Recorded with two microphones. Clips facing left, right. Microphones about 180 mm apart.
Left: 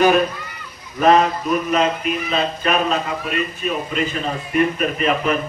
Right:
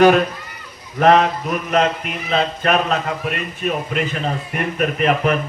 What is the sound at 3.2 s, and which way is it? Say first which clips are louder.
A man's voice: even; 65° right (ahead or behind).